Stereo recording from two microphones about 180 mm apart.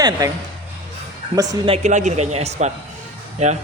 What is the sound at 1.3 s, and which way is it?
Speech, 20° right (ahead or behind).